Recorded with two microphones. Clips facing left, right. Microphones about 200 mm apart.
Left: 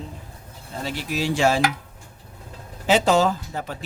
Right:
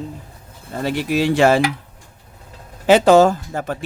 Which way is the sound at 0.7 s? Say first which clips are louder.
Right 8 dB; 55° right (ahead or behind).